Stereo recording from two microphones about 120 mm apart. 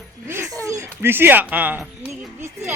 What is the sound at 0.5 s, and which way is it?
Speech, 30° right (ahead or behind).